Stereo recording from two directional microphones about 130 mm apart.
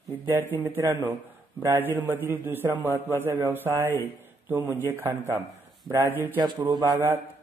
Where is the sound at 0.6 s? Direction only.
15° right (ahead or behind).